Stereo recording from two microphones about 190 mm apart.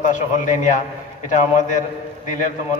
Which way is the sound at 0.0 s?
40° left (ahead or behind).